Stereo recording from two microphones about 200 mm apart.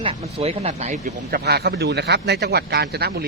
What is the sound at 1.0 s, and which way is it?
Speech, 50° right (ahead or behind).